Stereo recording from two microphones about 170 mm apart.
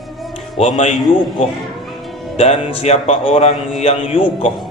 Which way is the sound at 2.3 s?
40° left (ahead or behind).